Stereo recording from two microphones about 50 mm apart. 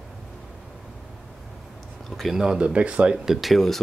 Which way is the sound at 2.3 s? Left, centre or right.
Centre.